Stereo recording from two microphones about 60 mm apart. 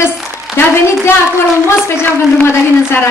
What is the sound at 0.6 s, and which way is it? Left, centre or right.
Speech, left.